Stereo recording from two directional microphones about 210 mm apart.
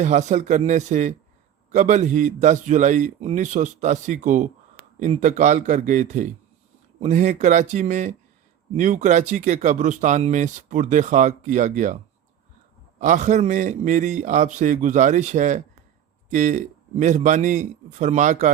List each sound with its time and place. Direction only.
0.0 s speech: 35° right (ahead or behind)
13.0 s speech: 35° right (ahead or behind)